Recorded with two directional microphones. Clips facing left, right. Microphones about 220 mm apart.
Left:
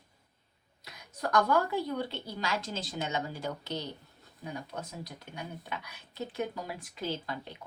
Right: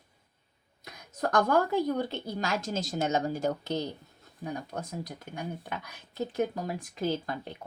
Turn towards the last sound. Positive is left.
turn(degrees=-50)  # may be behind; listen again after turning